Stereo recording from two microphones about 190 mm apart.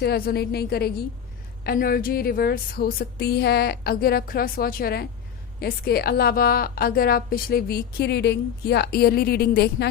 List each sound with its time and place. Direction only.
0.0 s a woman's voice: 55° left (ahead or behind)